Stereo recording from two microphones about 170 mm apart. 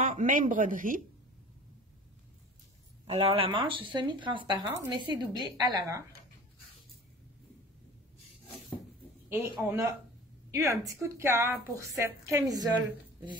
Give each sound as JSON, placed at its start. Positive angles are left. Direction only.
{"t": 0.0, "sound": "speech", "side_deg": -45}
{"t": 3.1, "sound": "speech", "side_deg": -35}
{"t": 9.3, "sound": "speech", "side_deg": -10}